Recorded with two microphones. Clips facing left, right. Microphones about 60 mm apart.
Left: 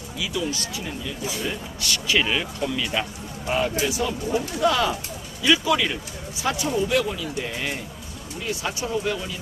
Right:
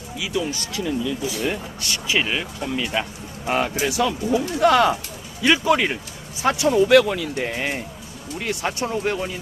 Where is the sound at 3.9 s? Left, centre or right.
Right.